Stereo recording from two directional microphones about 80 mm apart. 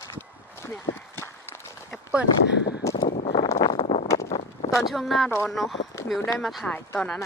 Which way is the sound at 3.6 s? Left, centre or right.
Left.